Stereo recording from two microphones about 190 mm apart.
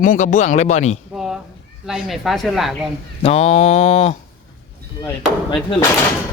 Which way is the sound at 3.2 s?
30° left (ahead or behind).